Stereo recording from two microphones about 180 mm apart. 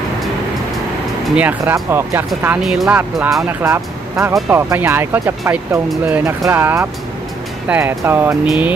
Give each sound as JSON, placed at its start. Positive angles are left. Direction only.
{"t": 1.3, "sound": "speech", "side_deg": -10}